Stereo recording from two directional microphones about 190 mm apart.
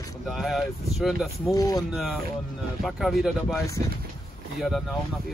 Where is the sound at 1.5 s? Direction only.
20° left (ahead or behind).